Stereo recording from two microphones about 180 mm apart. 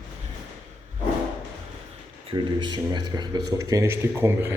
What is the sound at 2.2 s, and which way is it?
Speech, 25° right (ahead or behind).